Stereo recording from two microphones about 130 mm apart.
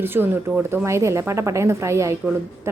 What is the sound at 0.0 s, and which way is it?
Speech, 15° right (ahead or behind).